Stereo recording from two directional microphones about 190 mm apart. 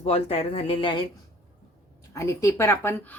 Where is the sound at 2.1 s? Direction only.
15° left (ahead or behind).